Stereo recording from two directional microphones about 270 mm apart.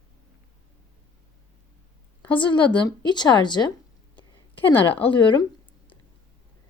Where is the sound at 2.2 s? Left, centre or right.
Centre.